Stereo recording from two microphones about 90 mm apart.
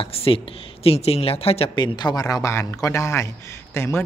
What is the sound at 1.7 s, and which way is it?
A man's voice, 55° left (ahead or behind).